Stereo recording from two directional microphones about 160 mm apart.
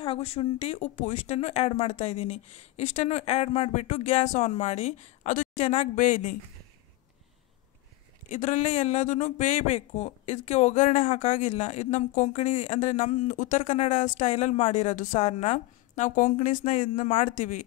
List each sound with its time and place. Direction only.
0.0 s speech: 40° left (ahead or behind)
8.3 s speech: 50° left (ahead or behind)